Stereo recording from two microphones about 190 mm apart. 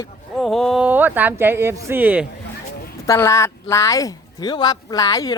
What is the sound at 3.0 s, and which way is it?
A woman's voice, 15° left (ahead or behind).